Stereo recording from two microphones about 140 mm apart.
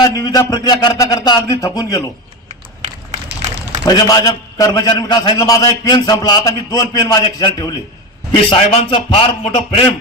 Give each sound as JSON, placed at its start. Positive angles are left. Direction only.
{"t": 0.0, "sound": "a man's voice", "side_deg": 25}
{"t": 3.8, "sound": "a man's voice", "side_deg": 25}
{"t": 8.4, "sound": "music", "side_deg": 35}
{"t": 9.6, "sound": "a man's voice", "side_deg": 45}